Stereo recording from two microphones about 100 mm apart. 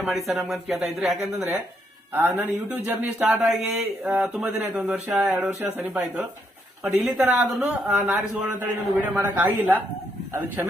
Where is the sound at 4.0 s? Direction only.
15° right (ahead or behind).